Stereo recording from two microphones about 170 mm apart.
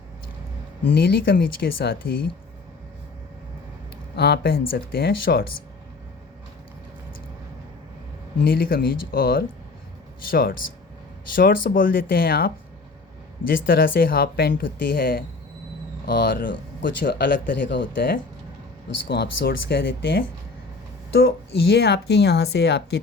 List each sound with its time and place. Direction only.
1.0 s speech: 85° left; by 2.3 s 65° left (ahead or behind)
4.1 s speech: 70° left (ahead or behind)
8.4 s speech: 55° left (ahead or behind)
11.7 s speech: 55° left (ahead or behind)
13.5 s speech: 60° left (ahead or behind); by 23.0 s 80° left